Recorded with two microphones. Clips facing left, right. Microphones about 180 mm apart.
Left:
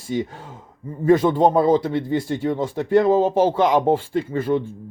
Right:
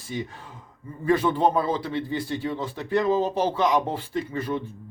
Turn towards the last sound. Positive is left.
turn(degrees=50)  # may be behind; listen again after turning